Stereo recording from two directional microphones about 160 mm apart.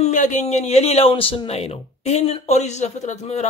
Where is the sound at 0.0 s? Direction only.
50° left (ahead or behind).